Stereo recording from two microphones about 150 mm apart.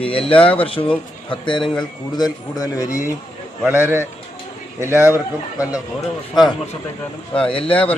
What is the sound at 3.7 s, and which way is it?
A man's voice, 15° right (ahead or behind).